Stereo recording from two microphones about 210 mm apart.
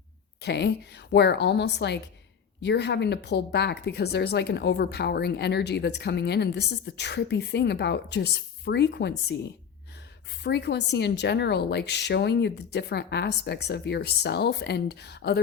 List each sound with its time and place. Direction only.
0.4 s speech: 55° left (ahead or behind)